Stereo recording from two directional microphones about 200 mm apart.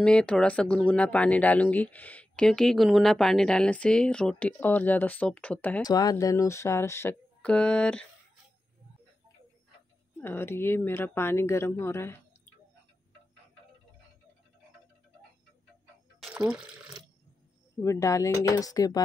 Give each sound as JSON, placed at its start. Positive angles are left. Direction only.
{"t": 0.0, "sound": "speech", "side_deg": 5}
{"t": 5.9, "sound": "speech", "side_deg": 20}
{"t": 10.2, "sound": "speech", "side_deg": 10}
{"t": 16.2, "sound": "water", "side_deg": -5}
{"t": 17.8, "sound": "speech", "side_deg": 15}